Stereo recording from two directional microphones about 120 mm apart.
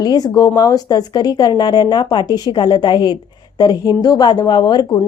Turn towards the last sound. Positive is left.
turn(degrees=35)  # may be behind; listen again after turning